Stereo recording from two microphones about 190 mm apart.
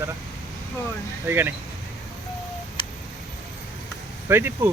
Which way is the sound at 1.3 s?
10° right (ahead or behind).